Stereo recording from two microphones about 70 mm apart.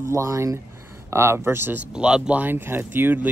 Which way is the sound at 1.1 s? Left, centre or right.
Right.